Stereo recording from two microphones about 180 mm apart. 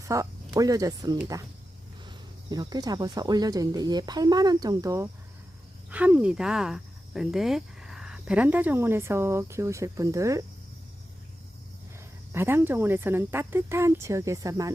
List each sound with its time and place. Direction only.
0.0 s speech: 20° right (ahead or behind)
5.9 s speech: 10° right (ahead or behind)
12.3 s speech: 15° right (ahead or behind)